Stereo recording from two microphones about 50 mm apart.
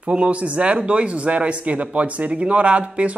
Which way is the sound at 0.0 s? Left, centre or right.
Right.